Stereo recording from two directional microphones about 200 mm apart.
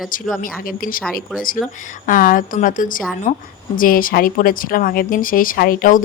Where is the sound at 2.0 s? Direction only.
45° left (ahead or behind).